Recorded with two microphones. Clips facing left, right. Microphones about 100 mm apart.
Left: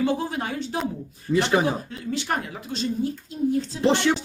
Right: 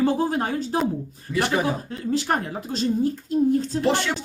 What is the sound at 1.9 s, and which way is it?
Speech, 35° right (ahead or behind).